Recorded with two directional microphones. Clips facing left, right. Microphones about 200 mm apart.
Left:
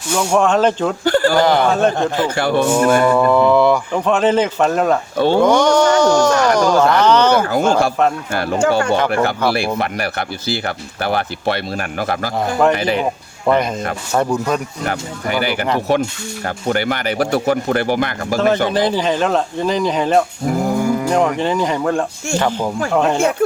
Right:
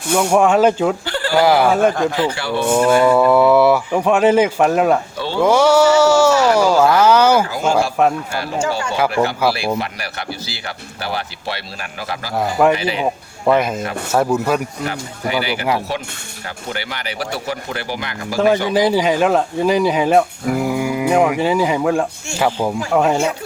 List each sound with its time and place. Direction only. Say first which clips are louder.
0.2 s speech: right 1 dB; 10° right (ahead or behind)
1.0 s speech: left 7 dB; 45° left (ahead or behind)
1.4 s speech: right 1 dB; 5° right (ahead or behind)
2.2 s speech: left 4 dB; 50° left (ahead or behind)
3.0 s speech: right 1 dB; 5° right (ahead or behind)
5.1 s speech: left 10 dB; 50° left (ahead or behind)
5.4 s speech: right 3 dB; 5° right (ahead or behind)
7.4 s speech: left 3 dB; 55° left (ahead or behind)
13.4 s speech: even; 5° right (ahead or behind)
14.8 s speech: left 2 dB; 50° left (ahead or behind)
16.6 s speech: left 9 dB; 50° left (ahead or behind)
18.3 s speech: right 1 dB; 10° right (ahead or behind)